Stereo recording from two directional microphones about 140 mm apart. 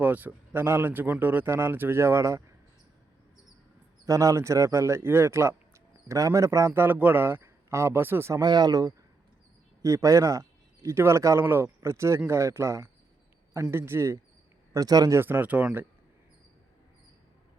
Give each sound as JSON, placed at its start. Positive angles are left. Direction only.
{"t": 0.0, "sound": "speech", "side_deg": -10}
{"t": 4.0, "sound": "speech", "side_deg": -25}
{"t": 8.4, "sound": "speech", "side_deg": -30}